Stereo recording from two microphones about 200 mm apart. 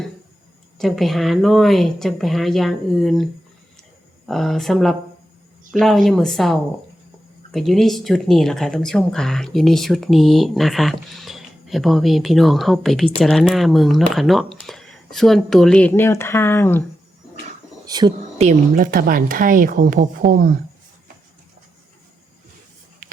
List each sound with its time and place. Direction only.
0.8 s a woman's voice: centre (ahead or behind)
4.3 s a woman's voice: centre (ahead or behind)
17.8 s speech: 20° right (ahead or behind)
18.3 s a woman's voice: 40° right (ahead or behind)